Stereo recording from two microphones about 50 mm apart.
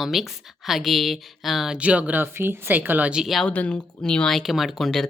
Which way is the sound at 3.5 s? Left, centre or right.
Left.